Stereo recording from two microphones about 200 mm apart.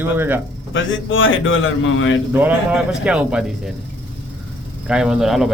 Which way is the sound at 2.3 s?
10° right (ahead or behind).